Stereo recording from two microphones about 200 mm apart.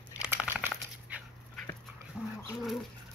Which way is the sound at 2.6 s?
Centre (ahead or behind).